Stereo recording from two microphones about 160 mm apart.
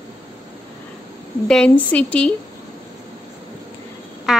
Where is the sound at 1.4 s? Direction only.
5° left (ahead or behind).